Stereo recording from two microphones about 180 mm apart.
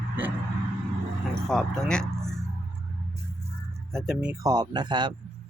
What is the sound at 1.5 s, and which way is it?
Speech, 5° left (ahead or behind).